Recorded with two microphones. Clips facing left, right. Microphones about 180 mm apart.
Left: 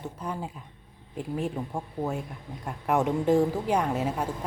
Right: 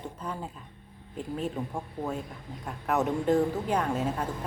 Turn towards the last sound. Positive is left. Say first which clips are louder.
# left 1 dB
turn(degrees=10)  # may be behind; listen again after turning